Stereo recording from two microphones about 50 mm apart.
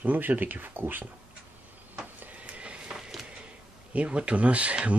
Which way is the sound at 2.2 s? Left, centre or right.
Right.